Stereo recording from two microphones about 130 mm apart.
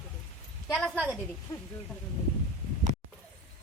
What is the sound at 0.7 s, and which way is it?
Speech, 10° left (ahead or behind).